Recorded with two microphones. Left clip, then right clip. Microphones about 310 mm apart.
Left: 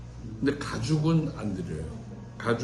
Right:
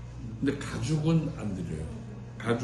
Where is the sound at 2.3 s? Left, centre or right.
Centre.